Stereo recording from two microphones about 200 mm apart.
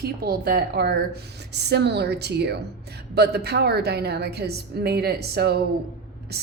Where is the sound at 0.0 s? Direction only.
50° right (ahead or behind).